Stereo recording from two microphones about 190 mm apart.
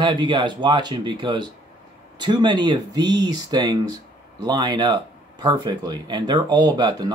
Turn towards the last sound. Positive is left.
turn(degrees=-20)  # may be behind; listen again after turning